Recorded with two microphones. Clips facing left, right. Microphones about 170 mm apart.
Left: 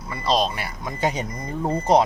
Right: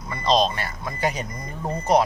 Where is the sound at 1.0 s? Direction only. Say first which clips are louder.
Left 2 dB; 25° left (ahead or behind).